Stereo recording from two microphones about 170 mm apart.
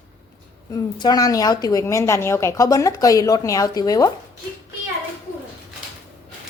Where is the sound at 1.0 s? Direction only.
25° left (ahead or behind).